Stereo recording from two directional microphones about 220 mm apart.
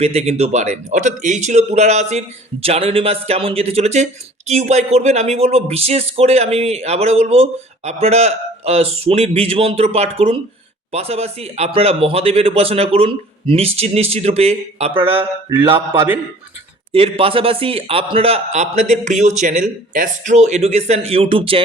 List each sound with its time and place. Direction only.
0.0 s speech: 30° right (ahead or behind)
15.4 s mantra: 15° right (ahead or behind)
16.9 s speech: 25° right (ahead or behind)